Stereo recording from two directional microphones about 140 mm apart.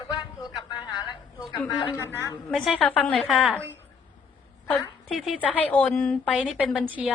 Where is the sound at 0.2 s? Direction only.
30° left (ahead or behind).